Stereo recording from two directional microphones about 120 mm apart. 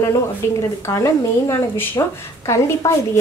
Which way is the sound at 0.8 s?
20° left (ahead or behind).